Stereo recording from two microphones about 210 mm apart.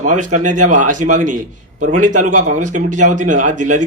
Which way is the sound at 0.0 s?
35° right (ahead or behind).